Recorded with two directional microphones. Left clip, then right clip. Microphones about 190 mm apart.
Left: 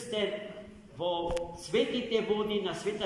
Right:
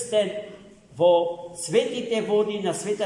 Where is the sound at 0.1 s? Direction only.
80° right.